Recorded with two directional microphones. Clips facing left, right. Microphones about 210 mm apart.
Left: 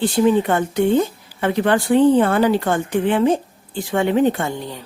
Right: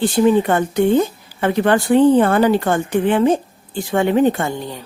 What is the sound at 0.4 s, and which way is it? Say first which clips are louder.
Speech: right 2 dB; 45° right (ahead or behind).